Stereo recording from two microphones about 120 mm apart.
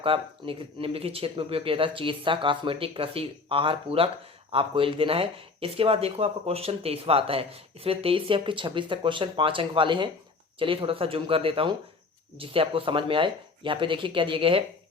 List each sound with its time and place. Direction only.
0.0 s speech: 50° right (ahead or behind)